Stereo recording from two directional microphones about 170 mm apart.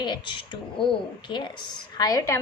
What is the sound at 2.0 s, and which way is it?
Speech, 20° left (ahead or behind).